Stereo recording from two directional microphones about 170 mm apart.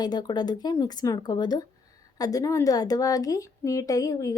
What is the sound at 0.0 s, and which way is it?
A woman's voice, 25° left (ahead or behind).